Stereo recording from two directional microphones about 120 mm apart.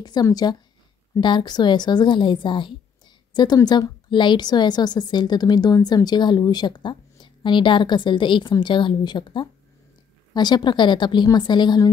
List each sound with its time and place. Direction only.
0.0 s a woman's voice: 35° left (ahead or behind)